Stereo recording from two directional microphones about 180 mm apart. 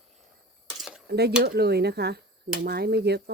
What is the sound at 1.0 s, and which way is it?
Speech, 65° right (ahead or behind).